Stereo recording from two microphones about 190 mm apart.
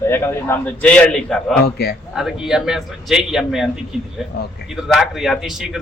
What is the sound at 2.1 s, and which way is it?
A man's voice, centre (ahead or behind).